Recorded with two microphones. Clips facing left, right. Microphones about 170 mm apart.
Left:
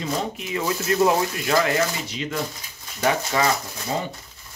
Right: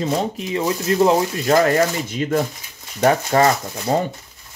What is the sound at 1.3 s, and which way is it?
Speech, 40° right (ahead or behind).